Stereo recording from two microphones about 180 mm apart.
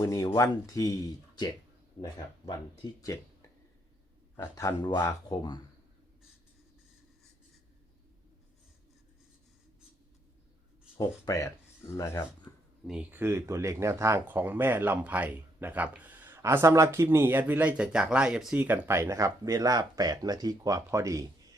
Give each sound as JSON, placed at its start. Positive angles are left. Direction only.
{"t": 0.0, "sound": "speech", "side_deg": 20}
{"t": 4.4, "sound": "speech", "side_deg": 15}
{"t": 10.9, "sound": "speech", "side_deg": 20}
{"t": 12.5, "sound": "a sound", "side_deg": 15}
{"t": 12.9, "sound": "speech", "side_deg": -10}